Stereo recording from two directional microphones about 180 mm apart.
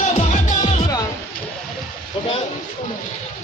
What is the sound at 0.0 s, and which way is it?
Music, 40° left (ahead or behind).